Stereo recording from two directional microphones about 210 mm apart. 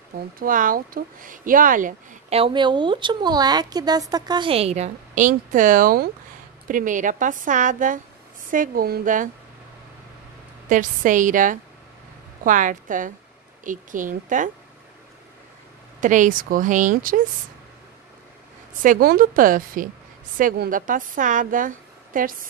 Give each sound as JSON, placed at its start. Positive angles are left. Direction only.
{"t": 0.4, "sound": "speech", "side_deg": -40}
{"t": 10.7, "sound": "speech", "side_deg": -40}
{"t": 16.0, "sound": "speech", "side_deg": -35}
{"t": 18.8, "sound": "speech", "side_deg": -40}